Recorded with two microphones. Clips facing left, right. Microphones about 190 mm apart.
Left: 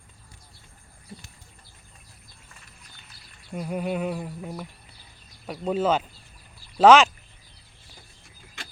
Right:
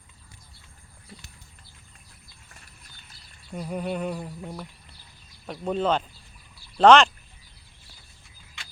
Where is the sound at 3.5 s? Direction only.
5° left (ahead or behind).